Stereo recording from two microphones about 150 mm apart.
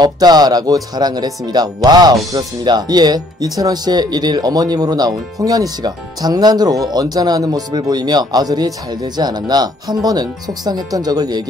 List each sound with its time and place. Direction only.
0.0 s speech: 25° right (ahead or behind)